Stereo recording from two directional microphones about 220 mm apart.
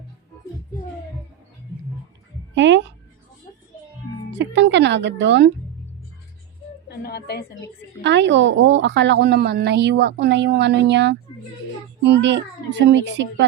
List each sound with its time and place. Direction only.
2.6 s a woman's voice: 55° right (ahead or behind)
4.3 s speech: 55° right (ahead or behind)
6.8 s a woman's voice: 45° left (ahead or behind)
8.0 s a woman's voice: 55° right (ahead or behind)